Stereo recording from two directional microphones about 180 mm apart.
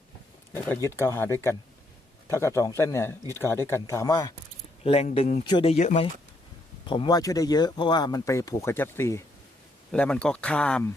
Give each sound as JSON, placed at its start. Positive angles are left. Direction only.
{"t": 0.5, "sound": "speech", "side_deg": 15}
{"t": 4.8, "sound": "a man's voice", "side_deg": 35}
{"t": 5.7, "sound": "a man's voice", "side_deg": 40}
{"t": 6.8, "sound": "speech", "side_deg": 25}